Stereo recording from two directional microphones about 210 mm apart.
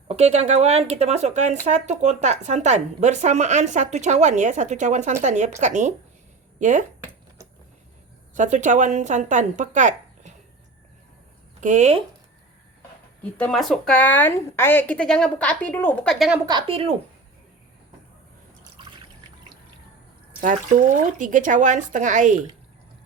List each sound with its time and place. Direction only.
0.1 s speech: 30° right (ahead or behind)
8.4 s speech: 35° right (ahead or behind)
11.6 s speech: 35° right (ahead or behind)
13.3 s a woman's voice: 5° left (ahead or behind)
16.5 s a woman's voice: 25° right (ahead or behind)
18.6 s water: 20° right (ahead or behind)
20.4 s speech: 40° right (ahead or behind)